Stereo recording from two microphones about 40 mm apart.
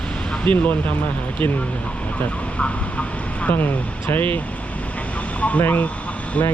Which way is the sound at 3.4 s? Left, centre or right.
Left.